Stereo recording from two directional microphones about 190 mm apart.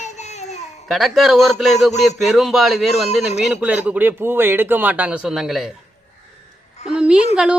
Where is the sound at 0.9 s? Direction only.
Centre (ahead or behind).